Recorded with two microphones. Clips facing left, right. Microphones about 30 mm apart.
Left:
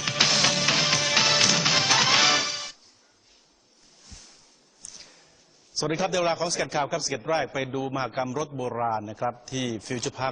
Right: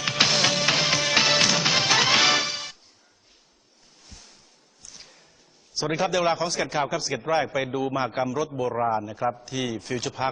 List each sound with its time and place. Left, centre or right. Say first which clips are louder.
0.0 s music: right 1 dB; centre
4.0 s a sound: right 1 dB; centre
5.7 s a man's voice: right 1 dB; centre